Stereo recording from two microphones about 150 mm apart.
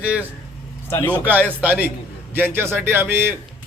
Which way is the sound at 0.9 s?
15° left (ahead or behind).